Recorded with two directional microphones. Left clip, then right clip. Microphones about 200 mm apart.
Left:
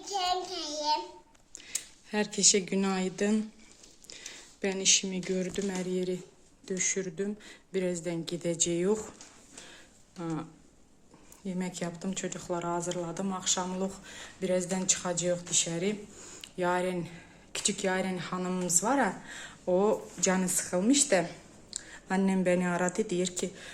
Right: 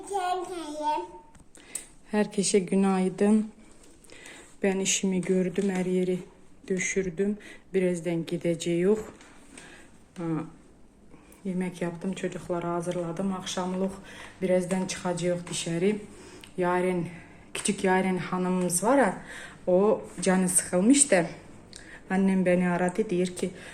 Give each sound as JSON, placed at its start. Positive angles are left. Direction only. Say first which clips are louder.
{"t": 0.1, "sound": "a sound", "louder": "right 1 dB", "side_deg": 10}
{"t": 1.6, "sound": "speech", "louder": "left 4 dB", "side_deg": 0}
{"t": 4.1, "sound": "a sound", "louder": "left 1 dB", "side_deg": 0}
{"t": 4.9, "sound": "speech", "louder": "right 4 dB", "side_deg": -10}
{"t": 10.2, "sound": "speech", "louder": "right 4 dB", "side_deg": 0}
{"t": 11.4, "sound": "speech", "louder": "right 4 dB", "side_deg": 5}